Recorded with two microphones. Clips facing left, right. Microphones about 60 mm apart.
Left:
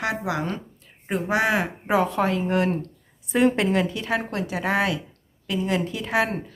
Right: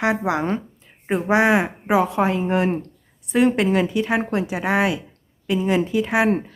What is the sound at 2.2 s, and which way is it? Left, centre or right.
Speech, right.